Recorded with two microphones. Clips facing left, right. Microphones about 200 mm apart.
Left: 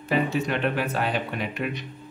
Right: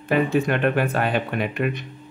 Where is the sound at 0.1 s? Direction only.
55° right (ahead or behind).